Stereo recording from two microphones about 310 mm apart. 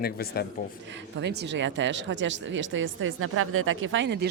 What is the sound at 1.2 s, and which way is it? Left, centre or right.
Speech, right.